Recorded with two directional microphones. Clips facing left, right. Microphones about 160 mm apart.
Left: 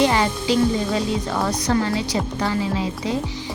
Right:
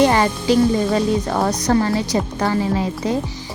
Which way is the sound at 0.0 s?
50° right (ahead or behind).